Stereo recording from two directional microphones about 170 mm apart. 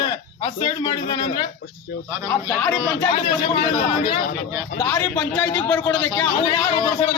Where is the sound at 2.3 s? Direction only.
10° left (ahead or behind).